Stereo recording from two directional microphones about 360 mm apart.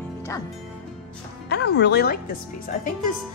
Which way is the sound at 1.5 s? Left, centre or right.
Left.